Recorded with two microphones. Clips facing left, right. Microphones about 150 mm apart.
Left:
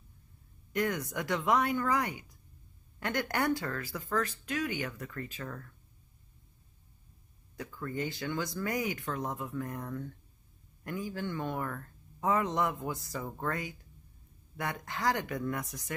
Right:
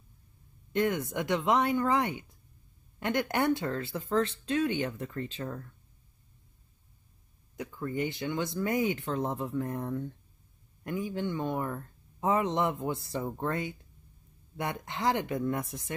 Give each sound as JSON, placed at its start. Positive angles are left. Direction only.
{"t": 0.7, "sound": "speech", "side_deg": -25}
{"t": 7.5, "sound": "speech", "side_deg": -20}